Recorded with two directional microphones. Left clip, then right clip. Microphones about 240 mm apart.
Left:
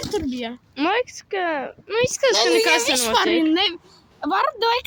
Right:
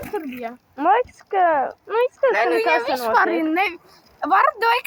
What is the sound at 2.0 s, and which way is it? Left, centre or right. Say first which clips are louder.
Speech: left 1 dB; left.